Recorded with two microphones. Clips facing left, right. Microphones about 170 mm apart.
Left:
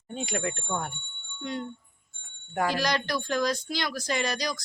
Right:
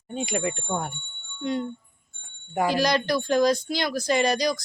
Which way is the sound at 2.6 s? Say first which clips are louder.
Right 4 dB; 15° right (ahead or behind).